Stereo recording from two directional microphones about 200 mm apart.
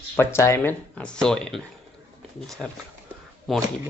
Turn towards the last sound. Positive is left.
turn(degrees=0)  # may be behind; listen again after turning